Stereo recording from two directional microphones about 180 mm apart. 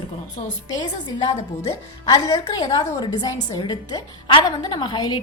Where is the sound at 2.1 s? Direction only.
20° left (ahead or behind).